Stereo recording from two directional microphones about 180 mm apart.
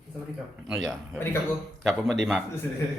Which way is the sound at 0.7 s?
Centre (ahead or behind).